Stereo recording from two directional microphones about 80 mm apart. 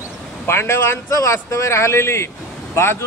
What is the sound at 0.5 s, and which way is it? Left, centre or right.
Speech, left.